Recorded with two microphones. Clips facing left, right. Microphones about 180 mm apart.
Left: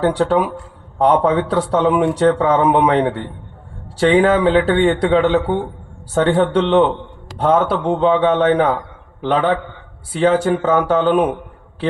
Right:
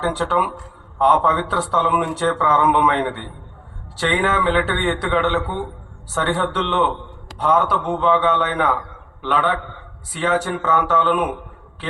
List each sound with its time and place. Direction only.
0.3 s a man's voice: 35° left (ahead or behind)